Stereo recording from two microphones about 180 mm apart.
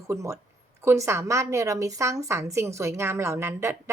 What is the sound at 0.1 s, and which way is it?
A woman's voice, 15° right (ahead or behind).